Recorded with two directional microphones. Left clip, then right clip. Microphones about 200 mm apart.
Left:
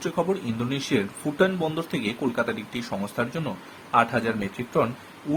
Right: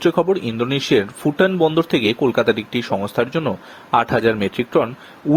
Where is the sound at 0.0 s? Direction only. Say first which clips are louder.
Right 9 dB; 40° right (ahead or behind).